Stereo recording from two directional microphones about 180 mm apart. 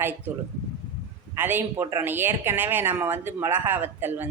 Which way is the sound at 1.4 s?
10° right (ahead or behind).